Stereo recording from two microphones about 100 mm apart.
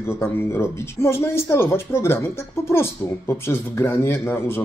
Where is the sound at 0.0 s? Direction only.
25° left (ahead or behind).